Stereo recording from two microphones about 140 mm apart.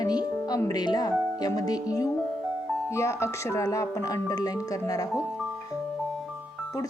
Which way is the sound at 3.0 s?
20° left (ahead or behind).